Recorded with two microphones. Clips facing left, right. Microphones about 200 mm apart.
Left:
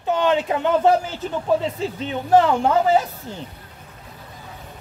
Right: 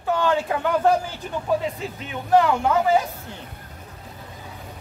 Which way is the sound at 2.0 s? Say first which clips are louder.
Left 2 dB; 30° left (ahead or behind).